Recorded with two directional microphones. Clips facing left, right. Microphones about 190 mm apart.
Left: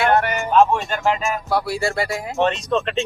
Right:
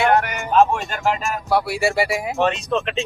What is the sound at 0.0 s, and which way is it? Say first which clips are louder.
Music: even; 15° right (ahead or behind).